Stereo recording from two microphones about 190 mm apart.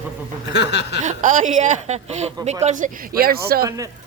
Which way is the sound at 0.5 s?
65° left (ahead or behind).